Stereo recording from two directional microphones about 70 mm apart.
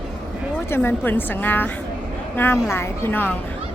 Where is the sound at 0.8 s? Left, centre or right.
Left.